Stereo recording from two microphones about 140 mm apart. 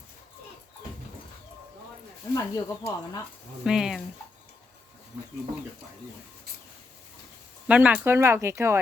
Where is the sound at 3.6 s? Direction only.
5° right (ahead or behind).